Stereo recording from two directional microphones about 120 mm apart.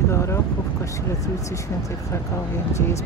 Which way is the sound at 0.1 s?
25° left (ahead or behind).